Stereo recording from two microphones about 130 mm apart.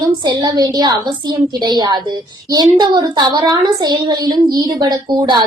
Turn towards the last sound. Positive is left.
turn(degrees=-35)  # may be behind; listen again after turning